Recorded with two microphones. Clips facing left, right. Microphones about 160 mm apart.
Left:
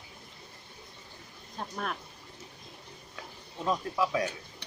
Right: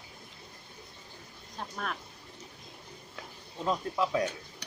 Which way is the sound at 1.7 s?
10° left (ahead or behind).